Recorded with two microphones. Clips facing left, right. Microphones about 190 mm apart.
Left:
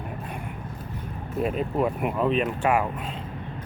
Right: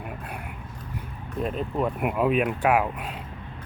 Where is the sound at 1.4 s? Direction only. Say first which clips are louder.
Left 2 dB; 5° left (ahead or behind).